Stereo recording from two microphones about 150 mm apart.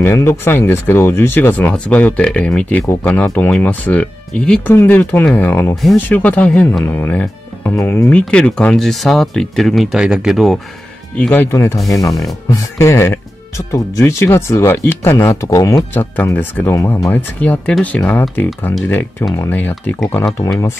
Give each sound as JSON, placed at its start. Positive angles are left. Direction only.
{"t": 0.0, "sound": "speech", "side_deg": 15}
{"t": 11.5, "sound": "speech", "side_deg": 20}